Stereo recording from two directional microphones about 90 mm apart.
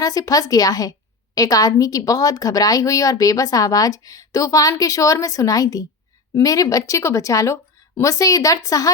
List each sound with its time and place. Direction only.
0.0 s speech: 40° left (ahead or behind)